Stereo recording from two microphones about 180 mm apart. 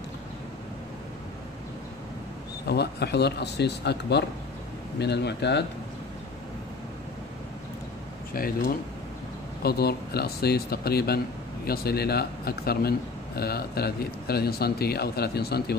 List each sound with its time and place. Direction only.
2.6 s speech: 65° left (ahead or behind)
8.3 s speech: 55° left (ahead or behind)